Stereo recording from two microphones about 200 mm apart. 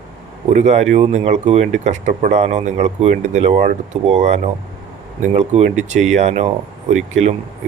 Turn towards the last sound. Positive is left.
turn(degrees=-35)  # may be behind; listen again after turning